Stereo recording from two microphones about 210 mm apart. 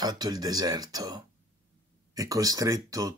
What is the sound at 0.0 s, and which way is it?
Speech, 20° right (ahead or behind).